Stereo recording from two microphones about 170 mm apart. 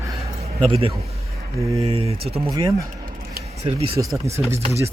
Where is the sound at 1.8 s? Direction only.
35° right (ahead or behind).